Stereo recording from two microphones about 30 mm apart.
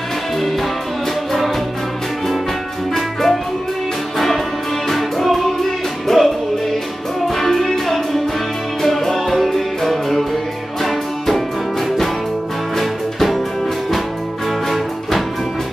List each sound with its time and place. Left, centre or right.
2.9 s music: centre
4.8 s music: centre
12.7 s music: centre
14.7 s music: centre